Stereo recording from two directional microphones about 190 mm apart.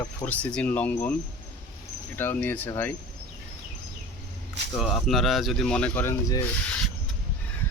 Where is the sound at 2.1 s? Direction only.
10° left (ahead or behind).